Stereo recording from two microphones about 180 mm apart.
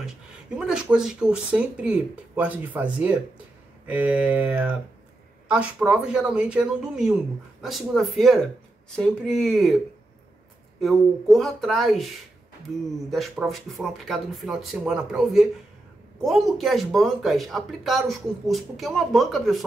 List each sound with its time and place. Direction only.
0.6 s speech: 5° right (ahead or behind)
10.8 s speech: centre (ahead or behind)
13.1 s speech: centre (ahead or behind)